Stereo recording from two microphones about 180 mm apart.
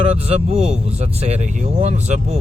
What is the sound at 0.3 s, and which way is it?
Speech, 35° right (ahead or behind).